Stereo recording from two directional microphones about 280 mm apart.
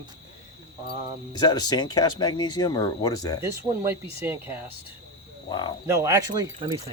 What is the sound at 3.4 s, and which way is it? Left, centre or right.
Speech, centre.